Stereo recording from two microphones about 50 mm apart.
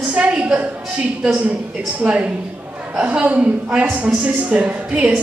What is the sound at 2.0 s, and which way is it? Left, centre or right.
Speech, right.